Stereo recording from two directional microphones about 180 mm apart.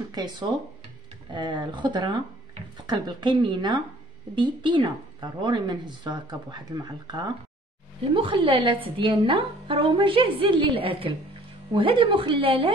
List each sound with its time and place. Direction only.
0.1 s a woman's voice: 25° right (ahead or behind)